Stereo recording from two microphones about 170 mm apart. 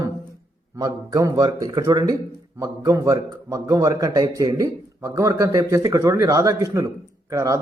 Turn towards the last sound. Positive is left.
turn(degrees=-20)  # may be behind; listen again after turning